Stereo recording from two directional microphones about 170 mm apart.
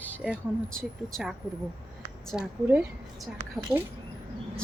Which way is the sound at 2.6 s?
10° right (ahead or behind).